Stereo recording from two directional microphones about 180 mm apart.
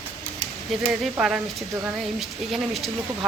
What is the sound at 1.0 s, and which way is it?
Speech, 5° right (ahead or behind).